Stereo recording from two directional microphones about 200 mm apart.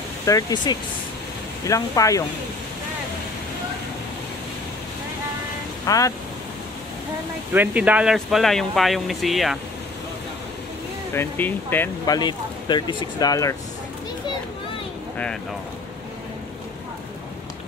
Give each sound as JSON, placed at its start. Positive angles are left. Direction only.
{"t": 0.2, "sound": "speech", "side_deg": 15}
{"t": 5.9, "sound": "speech", "side_deg": 15}
{"t": 7.5, "sound": "speech", "side_deg": -10}
{"t": 11.1, "sound": "speech", "side_deg": 10}